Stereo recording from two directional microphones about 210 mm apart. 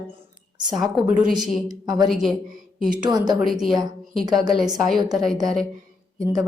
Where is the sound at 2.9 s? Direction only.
20° right (ahead or behind).